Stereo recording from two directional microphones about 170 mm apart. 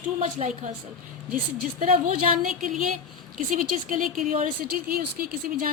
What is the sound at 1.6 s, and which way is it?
A woman's voice, 55° right (ahead or behind).